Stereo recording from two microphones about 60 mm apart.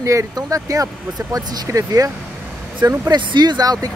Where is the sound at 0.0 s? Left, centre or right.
Right.